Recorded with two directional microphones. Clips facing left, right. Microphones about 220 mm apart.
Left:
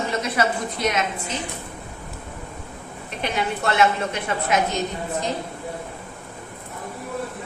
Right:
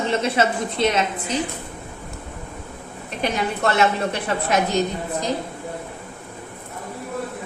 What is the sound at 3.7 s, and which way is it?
Speech, 35° right (ahead or behind).